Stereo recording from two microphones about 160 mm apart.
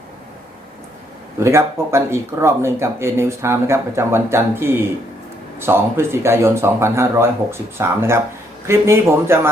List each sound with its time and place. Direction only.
1.4 s speech: 15° right (ahead or behind)